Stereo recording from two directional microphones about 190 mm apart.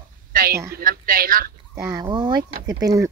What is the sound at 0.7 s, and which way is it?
Speech, 50° right (ahead or behind).